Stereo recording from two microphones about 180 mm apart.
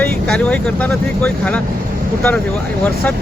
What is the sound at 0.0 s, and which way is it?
Speech, 5° left (ahead or behind).